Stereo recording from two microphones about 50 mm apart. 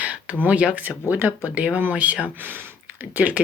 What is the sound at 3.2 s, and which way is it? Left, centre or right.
Speech, right.